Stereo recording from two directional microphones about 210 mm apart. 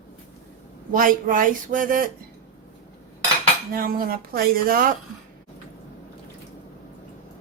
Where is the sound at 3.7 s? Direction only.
45° right (ahead or behind).